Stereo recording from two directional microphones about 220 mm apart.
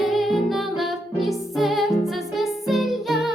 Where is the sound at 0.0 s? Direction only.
Centre (ahead or behind).